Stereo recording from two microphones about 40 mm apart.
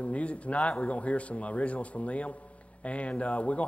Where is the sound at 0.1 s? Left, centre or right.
Left.